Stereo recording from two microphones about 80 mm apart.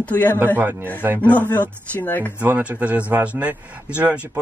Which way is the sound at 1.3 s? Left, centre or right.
Centre.